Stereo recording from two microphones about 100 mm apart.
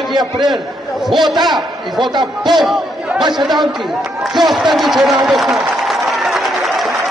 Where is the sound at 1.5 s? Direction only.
45° right (ahead or behind).